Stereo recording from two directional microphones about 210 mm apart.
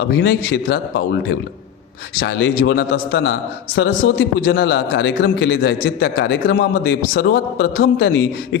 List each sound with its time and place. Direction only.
0.0 s a man's voice: 50° left (ahead or behind)